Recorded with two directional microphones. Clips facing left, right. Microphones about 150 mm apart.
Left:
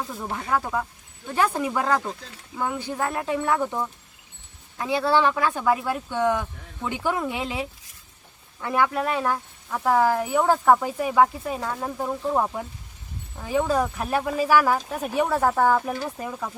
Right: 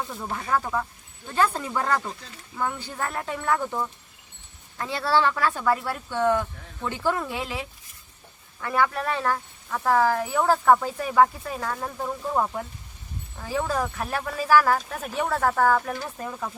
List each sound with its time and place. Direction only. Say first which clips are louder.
0.2 s speech: left 1 dB; 10° left (ahead or behind)